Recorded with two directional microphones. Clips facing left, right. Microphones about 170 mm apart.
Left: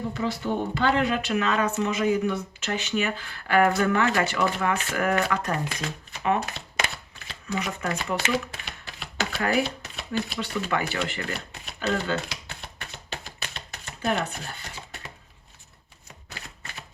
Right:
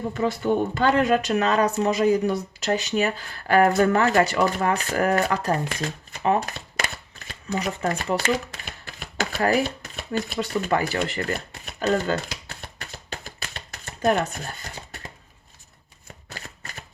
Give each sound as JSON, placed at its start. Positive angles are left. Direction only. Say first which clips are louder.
{"t": 0.1, "sound": "speech", "louder": "right 8 dB", "side_deg": -50}
{"t": 5.8, "sound": "shuffling cards", "louder": "right 3 dB", "side_deg": -35}
{"t": 10.4, "sound": "speech", "louder": "right 4 dB", "side_deg": -40}
{"t": 13.2, "sound": "shuffling cards", "louder": "right 1 dB", "side_deg": -45}